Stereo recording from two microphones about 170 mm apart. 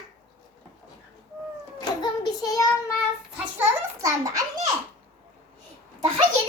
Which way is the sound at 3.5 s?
20° right (ahead or behind).